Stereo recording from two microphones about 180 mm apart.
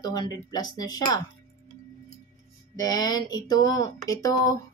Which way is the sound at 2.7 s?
20° left (ahead or behind).